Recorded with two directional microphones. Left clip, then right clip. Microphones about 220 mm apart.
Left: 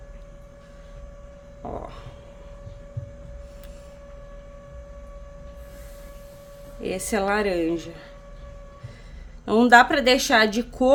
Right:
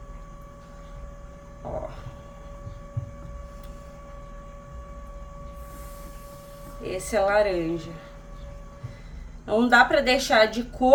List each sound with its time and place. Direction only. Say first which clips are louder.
6.8 s a woman's voice: right 1 dB; 50° left (ahead or behind)
9.5 s a woman's voice: left 3 dB; 50° left (ahead or behind)